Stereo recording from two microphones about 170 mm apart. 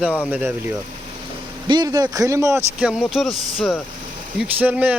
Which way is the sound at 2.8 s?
5° right (ahead or behind).